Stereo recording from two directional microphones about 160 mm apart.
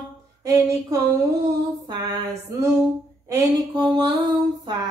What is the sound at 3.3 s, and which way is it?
Speech, 20° right (ahead or behind).